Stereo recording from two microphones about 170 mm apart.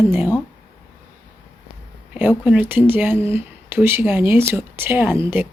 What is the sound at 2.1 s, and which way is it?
Speech, 10° right (ahead or behind).